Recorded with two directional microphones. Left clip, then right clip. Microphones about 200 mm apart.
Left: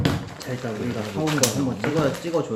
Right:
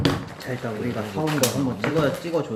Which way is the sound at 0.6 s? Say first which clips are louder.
Even; 20° right (ahead or behind).